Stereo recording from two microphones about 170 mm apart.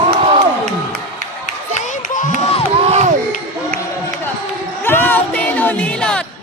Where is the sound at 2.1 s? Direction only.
50° left (ahead or behind).